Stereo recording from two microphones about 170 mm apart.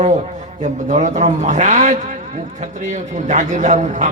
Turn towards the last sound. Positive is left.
turn(degrees=-45)  # may be behind; listen again after turning